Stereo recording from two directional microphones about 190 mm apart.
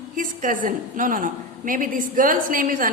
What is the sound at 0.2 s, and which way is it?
A woman's voice, 45° right (ahead or behind).